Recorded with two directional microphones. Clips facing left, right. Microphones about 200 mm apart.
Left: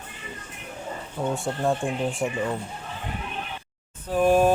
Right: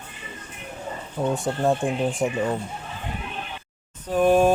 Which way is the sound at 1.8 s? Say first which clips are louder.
Right 3 dB; 15° right (ahead or behind).